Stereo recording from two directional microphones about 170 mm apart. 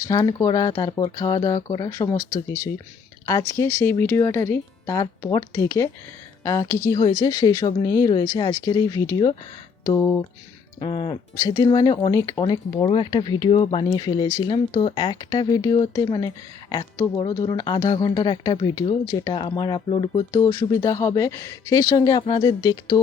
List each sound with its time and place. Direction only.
0.0 s speech: 20° left (ahead or behind)
3.2 s speech: 20° left (ahead or behind)
20.3 s speech: 20° left (ahead or behind)